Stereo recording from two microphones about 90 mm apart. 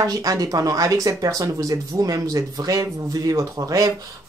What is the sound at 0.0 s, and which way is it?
Speech, 40° right (ahead or behind).